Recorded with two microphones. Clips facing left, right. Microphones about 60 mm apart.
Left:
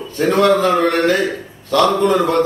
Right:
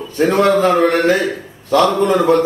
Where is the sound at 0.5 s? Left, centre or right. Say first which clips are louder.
Right 1 dB; right.